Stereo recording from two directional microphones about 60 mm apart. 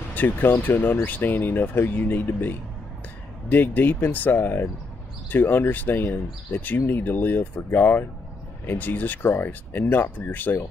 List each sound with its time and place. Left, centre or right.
0.1 s speech: left